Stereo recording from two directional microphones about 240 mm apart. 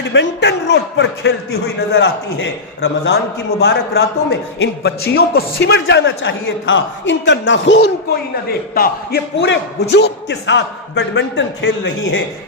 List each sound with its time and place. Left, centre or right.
0.1 s speech: left